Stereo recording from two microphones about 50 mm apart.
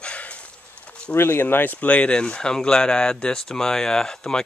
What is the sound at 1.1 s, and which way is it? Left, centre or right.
Speech, left.